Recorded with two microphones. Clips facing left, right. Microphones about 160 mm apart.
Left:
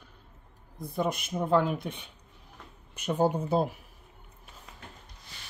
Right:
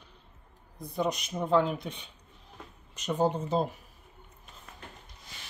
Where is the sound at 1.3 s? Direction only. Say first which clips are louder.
Left 1 dB; 5° left (ahead or behind).